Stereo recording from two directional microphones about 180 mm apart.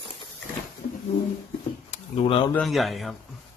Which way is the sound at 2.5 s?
Centre (ahead or behind).